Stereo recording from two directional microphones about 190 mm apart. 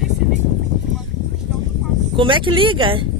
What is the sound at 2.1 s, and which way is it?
Speech, 25° right (ahead or behind).